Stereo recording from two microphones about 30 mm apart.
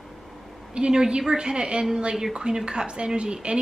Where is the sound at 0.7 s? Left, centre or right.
Right.